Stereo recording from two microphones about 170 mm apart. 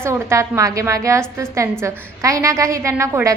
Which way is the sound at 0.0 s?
15° right (ahead or behind).